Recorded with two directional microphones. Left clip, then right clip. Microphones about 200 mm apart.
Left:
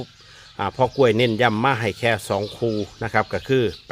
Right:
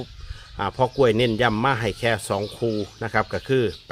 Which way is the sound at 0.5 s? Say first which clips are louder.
Left 2 dB; 5° left (ahead or behind).